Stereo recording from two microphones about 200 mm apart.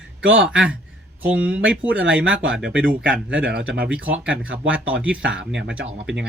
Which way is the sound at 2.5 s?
5° right (ahead or behind).